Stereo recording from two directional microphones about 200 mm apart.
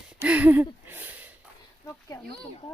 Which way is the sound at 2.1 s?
15° left (ahead or behind).